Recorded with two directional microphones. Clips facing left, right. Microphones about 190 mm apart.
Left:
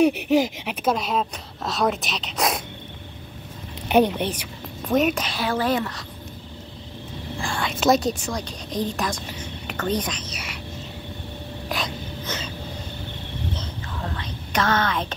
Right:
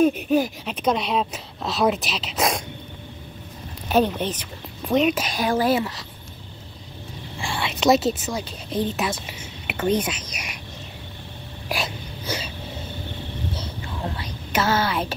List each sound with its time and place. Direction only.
0.0 s speech: 75° left (ahead or behind)
0.7 s a woman's voice: 5° left (ahead or behind)
3.9 s speech: 15° left (ahead or behind)
4.8 s a woman's voice: centre (ahead or behind)
5.2 s speech: 15° right (ahead or behind)
7.4 s a woman's voice: centre (ahead or behind)
11.7 s a sound: 10° right (ahead or behind)
13.5 s whispering: 10° right (ahead or behind)